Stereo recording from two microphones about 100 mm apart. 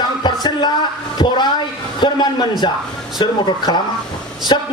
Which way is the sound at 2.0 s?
45° left (ahead or behind).